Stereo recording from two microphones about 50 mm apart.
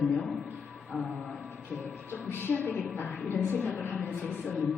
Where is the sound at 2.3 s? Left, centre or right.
Left.